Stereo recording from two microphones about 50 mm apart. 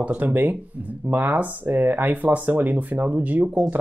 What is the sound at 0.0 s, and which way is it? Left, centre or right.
Speech, right.